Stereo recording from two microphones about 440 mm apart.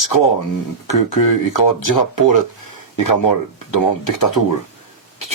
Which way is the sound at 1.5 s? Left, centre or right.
Left.